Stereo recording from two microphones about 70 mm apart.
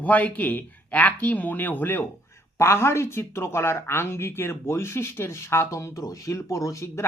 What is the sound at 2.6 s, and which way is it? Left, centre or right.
Speech, left.